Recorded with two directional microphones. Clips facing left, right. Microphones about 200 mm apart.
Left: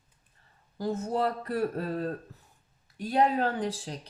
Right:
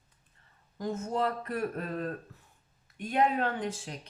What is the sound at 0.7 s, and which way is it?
Speech, 35° left (ahead or behind).